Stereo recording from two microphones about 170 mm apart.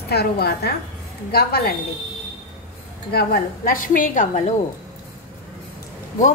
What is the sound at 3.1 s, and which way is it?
A woman's voice, 65° left (ahead or behind).